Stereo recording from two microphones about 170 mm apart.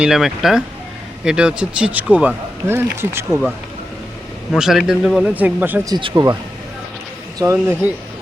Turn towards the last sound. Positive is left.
turn(degrees=-15)  # may be behind; listen again after turning